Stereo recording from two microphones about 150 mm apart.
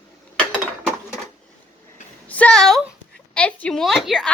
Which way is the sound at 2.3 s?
10° left (ahead or behind).